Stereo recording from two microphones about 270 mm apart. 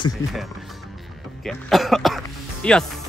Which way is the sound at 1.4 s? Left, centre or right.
Centre.